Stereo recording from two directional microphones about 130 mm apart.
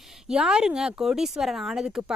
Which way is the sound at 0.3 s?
5° right (ahead or behind).